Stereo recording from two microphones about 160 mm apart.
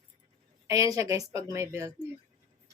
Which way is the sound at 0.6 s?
20° right (ahead or behind).